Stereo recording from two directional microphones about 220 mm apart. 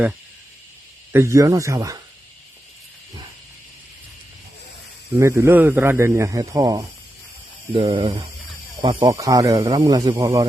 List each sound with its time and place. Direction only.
1.1 s a man's voice: 10° right (ahead or behind)
5.1 s a man's voice: 15° right (ahead or behind)